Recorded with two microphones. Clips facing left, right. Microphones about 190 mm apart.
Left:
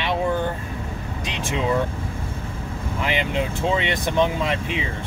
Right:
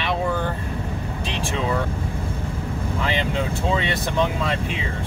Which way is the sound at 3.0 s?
15° left (ahead or behind).